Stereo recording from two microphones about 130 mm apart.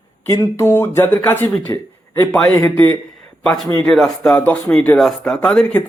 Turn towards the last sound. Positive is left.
turn(degrees=10)  # may be behind; listen again after turning